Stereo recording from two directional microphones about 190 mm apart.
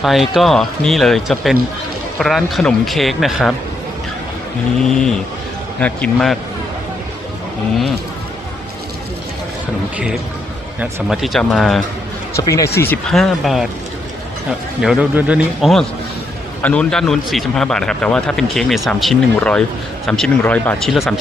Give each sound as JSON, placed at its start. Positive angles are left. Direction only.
{"t": 0.0, "sound": "speech", "side_deg": 0}
{"t": 4.8, "sound": "speech", "side_deg": 5}
{"t": 10.8, "sound": "speech", "side_deg": 0}
{"t": 12.4, "sound": "speech", "side_deg": 15}
{"t": 12.8, "sound": "speech", "side_deg": 5}
{"t": 14.8, "sound": "speech", "side_deg": -5}